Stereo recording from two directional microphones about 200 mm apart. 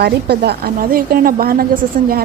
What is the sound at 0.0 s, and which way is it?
A woman's voice, 55° right (ahead or behind).